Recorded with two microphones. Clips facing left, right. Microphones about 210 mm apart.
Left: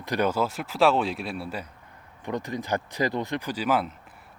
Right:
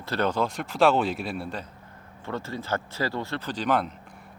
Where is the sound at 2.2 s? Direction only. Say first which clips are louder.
Left 2 dB; 15° left (ahead or behind).